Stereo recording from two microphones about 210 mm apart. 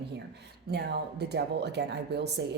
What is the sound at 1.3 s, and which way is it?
Speech, 55° right (ahead or behind).